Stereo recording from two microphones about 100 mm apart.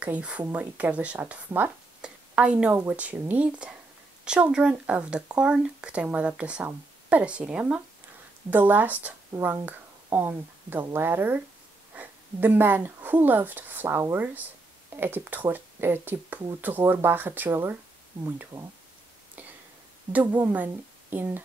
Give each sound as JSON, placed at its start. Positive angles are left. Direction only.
{"t": 0.0, "sound": "speech", "side_deg": -10}
{"t": 20.1, "sound": "a woman's voice", "side_deg": -15}